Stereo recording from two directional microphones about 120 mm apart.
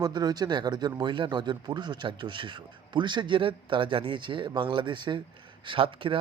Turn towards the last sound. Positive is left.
turn(degrees=-45)  # may be behind; listen again after turning